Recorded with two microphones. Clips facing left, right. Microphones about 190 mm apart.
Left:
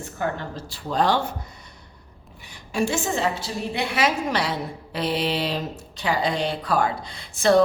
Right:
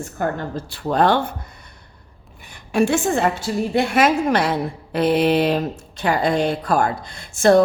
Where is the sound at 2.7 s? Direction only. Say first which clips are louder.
Right 6 dB; 60° right (ahead or behind).